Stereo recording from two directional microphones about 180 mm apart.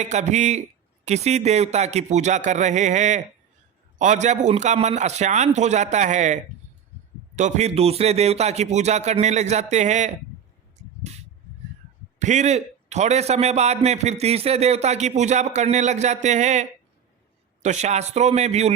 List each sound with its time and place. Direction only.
0.0 s a man's voice: 40° right (ahead or behind)
12.2 s a man's voice: 40° right (ahead or behind)